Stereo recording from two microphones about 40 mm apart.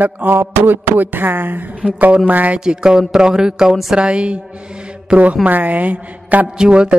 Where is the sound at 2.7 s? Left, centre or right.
Centre.